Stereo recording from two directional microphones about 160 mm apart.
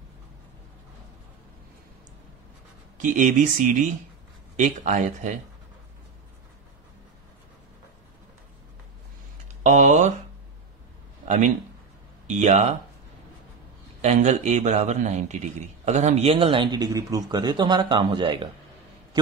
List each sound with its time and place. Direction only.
3.0 s speech: 55° right (ahead or behind)
9.6 s a sound: 50° right (ahead or behind)
11.2 s speech: 50° right (ahead or behind)
14.0 s a man's voice: 45° right (ahead or behind); by 18.5 s 30° right (ahead or behind)